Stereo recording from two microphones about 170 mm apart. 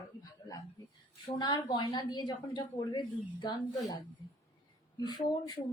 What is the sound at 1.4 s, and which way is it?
A woman's voice, 25° left (ahead or behind).